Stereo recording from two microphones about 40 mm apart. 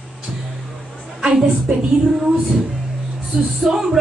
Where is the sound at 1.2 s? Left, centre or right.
Centre.